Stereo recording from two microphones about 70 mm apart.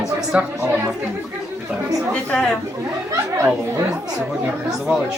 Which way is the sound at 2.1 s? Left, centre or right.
Centre.